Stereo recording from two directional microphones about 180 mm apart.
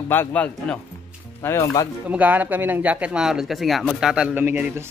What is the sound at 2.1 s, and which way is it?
Speech, 10° right (ahead or behind).